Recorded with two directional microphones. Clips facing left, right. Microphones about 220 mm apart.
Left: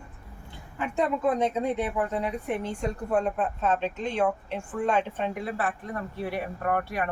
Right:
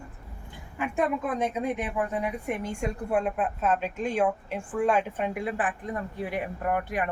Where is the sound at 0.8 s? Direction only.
10° right (ahead or behind).